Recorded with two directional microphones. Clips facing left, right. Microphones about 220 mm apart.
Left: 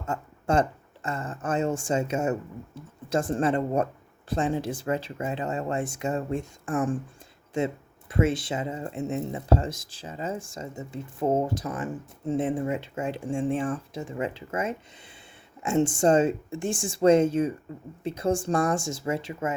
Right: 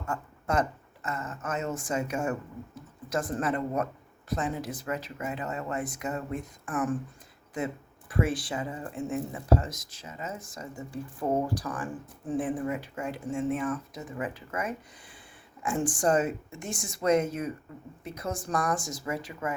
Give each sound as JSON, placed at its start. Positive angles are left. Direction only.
{"t": 0.0, "sound": "speech", "side_deg": 25}